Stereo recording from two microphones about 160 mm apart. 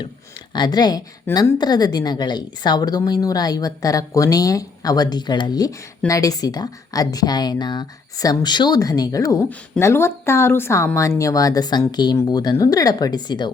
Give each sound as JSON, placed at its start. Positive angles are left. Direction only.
{"t": 0.5, "sound": "a woman's voice", "side_deg": 25}